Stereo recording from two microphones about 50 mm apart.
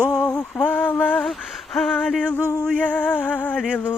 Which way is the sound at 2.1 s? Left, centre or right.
Centre.